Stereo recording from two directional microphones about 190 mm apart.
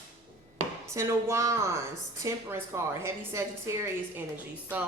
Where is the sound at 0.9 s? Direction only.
15° right (ahead or behind).